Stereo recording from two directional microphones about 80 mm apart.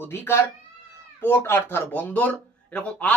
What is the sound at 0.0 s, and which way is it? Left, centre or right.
Speech, left.